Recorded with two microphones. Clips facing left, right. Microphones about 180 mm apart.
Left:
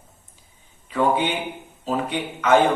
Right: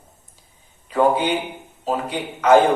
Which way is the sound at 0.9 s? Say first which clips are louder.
Right 3 dB; 40° right (ahead or behind).